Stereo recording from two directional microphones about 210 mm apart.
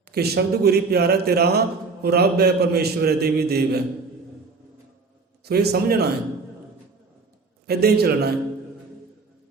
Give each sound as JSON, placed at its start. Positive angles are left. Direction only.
{"t": 0.1, "sound": "a man's voice", "side_deg": -50}
{"t": 5.5, "sound": "a man's voice", "side_deg": -50}
{"t": 7.7, "sound": "a man's voice", "side_deg": -50}